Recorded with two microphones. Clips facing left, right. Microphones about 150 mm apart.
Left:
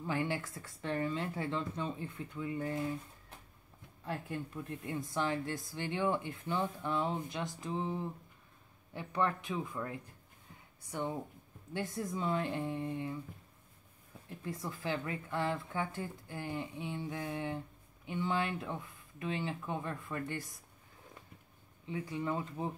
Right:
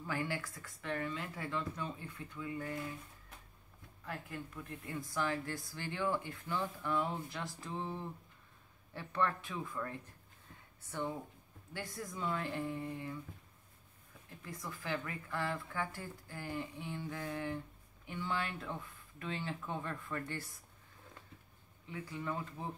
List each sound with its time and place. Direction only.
0.0 s speech: 25° left (ahead or behind)
14.4 s speech: 25° left (ahead or behind)
21.8 s speech: 20° left (ahead or behind)